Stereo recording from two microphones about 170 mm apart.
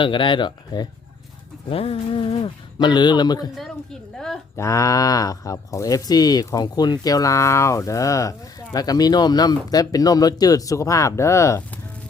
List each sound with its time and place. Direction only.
0.0 s speech: 30° left (ahead or behind)
4.5 s speech: 15° left (ahead or behind)